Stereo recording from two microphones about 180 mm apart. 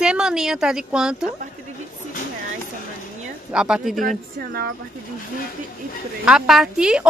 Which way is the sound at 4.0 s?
55° right (ahead or behind).